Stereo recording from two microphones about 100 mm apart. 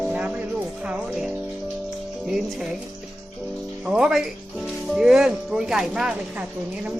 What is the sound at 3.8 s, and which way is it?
Speech, 5° right (ahead or behind).